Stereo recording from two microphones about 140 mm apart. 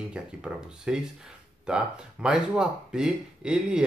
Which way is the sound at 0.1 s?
5° right (ahead or behind).